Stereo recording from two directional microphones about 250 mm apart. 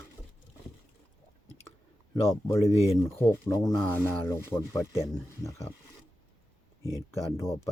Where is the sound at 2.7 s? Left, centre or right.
Centre.